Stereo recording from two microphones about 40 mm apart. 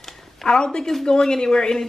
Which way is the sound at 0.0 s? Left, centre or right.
Centre.